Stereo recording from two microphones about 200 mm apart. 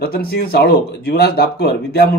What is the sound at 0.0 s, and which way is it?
Speech, 50° left (ahead or behind).